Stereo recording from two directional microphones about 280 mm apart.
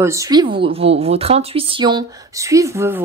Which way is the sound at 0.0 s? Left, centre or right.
Centre.